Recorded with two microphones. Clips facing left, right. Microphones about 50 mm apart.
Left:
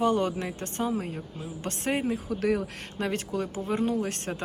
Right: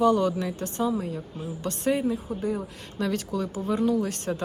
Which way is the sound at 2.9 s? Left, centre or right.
Left.